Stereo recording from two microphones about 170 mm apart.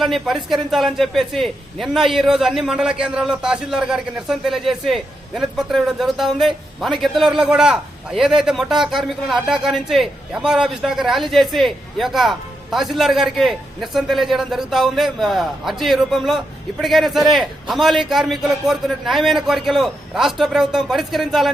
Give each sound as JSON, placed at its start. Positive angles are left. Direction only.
{"t": 0.0, "sound": "a man's voice", "side_deg": 0}